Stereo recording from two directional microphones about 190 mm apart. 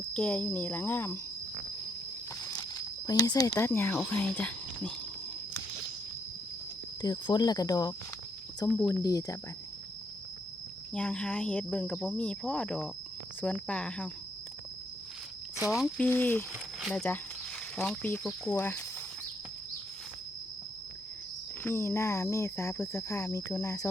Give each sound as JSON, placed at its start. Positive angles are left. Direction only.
{"t": 0.0, "sound": "speech", "side_deg": 5}
{"t": 2.4, "sound": "a sound", "side_deg": 20}
{"t": 3.7, "sound": "speech", "side_deg": 10}
{"t": 7.0, "sound": "speech", "side_deg": 20}
{"t": 10.9, "sound": "speech", "side_deg": 5}
{"t": 15.7, "sound": "speech", "side_deg": 0}
{"t": 21.6, "sound": "speech", "side_deg": 15}